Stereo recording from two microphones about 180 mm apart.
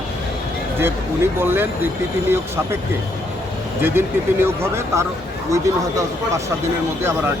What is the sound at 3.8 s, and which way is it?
Speech, 15° right (ahead or behind).